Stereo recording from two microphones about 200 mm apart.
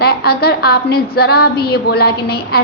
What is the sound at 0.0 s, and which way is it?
A woman's voice, 50° left (ahead or behind).